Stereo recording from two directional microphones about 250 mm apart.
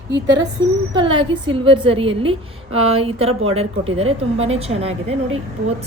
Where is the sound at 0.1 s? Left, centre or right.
Right.